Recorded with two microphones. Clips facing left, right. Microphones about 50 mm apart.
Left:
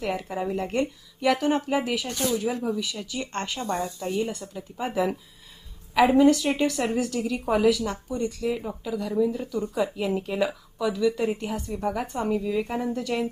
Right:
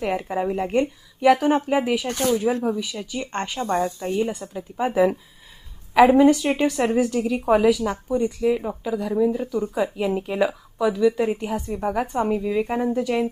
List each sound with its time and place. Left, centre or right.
0.0 s speech: right
2.0 s speech: right
2.7 s speech: centre
3.7 s speech: right
4.1 s speech: right
9.7 s a woman's voice: centre
12.3 s speech: right